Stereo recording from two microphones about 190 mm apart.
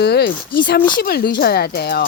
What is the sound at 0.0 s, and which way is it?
Speech, 60° left (ahead or behind).